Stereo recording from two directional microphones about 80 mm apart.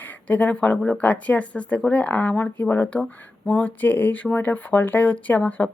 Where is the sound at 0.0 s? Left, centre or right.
Left.